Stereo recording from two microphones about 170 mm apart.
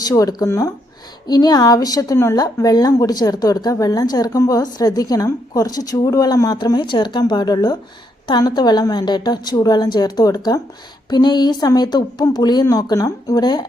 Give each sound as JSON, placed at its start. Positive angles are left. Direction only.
{"t": 0.0, "sound": "speech", "side_deg": 20}